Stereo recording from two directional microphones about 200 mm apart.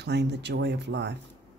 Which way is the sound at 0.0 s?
55° right (ahead or behind).